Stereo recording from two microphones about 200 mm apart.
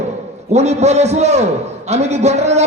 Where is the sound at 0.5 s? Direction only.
35° right (ahead or behind).